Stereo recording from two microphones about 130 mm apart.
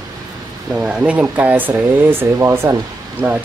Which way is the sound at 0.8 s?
5° right (ahead or behind).